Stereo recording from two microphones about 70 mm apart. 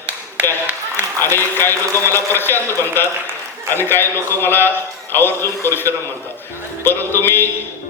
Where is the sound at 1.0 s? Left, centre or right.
Left.